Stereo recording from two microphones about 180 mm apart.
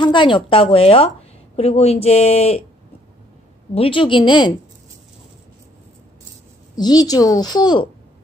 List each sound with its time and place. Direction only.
0.0 s a woman's voice: 25° left (ahead or behind)
3.7 s a woman's voice: 30° left (ahead or behind)
6.7 s a woman's voice: 20° left (ahead or behind)